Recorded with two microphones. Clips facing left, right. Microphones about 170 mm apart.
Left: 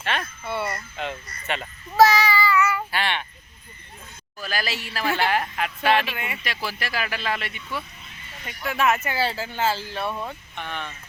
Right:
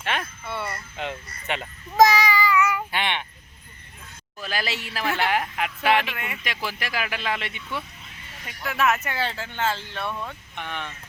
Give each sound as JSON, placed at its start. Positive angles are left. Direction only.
{"t": 0.0, "sound": "speech", "side_deg": -15}
{"t": 0.4, "sound": "speech", "side_deg": 0}
{"t": 0.9, "sound": "a child's voice", "side_deg": -15}
{"t": 4.4, "sound": "speech", "side_deg": -20}
{"t": 5.0, "sound": "speech", "side_deg": 0}
{"t": 5.3, "sound": "speech", "side_deg": -15}
{"t": 6.7, "sound": "speech", "side_deg": -15}
{"t": 8.4, "sound": "speech", "side_deg": 0}
{"t": 10.1, "sound": "speech", "side_deg": 30}
{"t": 10.5, "sound": "speech", "side_deg": -15}